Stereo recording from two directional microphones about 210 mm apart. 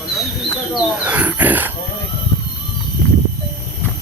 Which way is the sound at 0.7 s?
Centre (ahead or behind).